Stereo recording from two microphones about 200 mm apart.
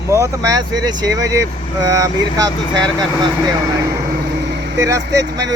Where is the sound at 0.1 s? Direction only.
15° right (ahead or behind).